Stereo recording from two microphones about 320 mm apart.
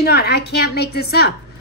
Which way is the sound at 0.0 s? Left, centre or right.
Left.